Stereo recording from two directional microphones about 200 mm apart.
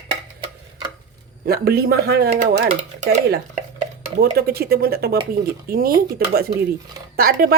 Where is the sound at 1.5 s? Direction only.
50° right (ahead or behind).